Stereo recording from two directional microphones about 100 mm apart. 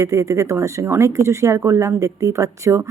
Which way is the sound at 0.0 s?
30° right (ahead or behind).